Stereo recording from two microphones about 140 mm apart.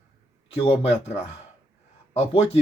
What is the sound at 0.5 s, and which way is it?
Speech, 45° left (ahead or behind).